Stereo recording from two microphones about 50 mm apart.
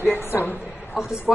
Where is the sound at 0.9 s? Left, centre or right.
Centre.